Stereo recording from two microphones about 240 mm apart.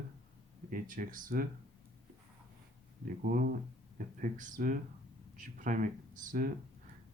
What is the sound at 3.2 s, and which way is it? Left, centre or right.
Speech, right.